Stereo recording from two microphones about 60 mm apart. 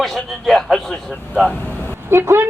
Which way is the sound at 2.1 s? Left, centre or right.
Right.